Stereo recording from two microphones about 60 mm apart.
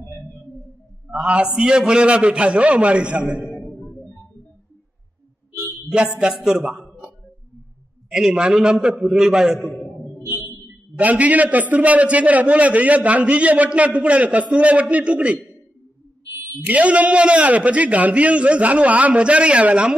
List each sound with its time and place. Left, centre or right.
1.1 s a man's voice: centre
5.9 s a man's voice: centre
8.1 s a man's voice: centre
11.0 s a man's voice: right
16.6 s a man's voice: right